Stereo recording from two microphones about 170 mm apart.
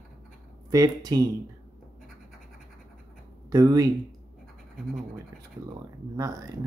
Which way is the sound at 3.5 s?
20° right (ahead or behind).